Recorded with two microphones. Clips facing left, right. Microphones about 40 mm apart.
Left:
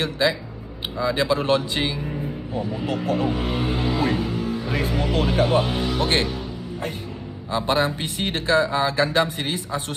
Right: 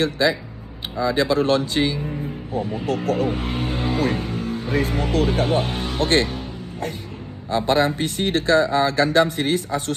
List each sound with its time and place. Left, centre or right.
0.0 s a man's voice: left
2.6 s speech: right
3.3 s music: right
4.8 s speech: right
5.1 s speech: left
5.7 s speech: right
7.5 s a man's voice: left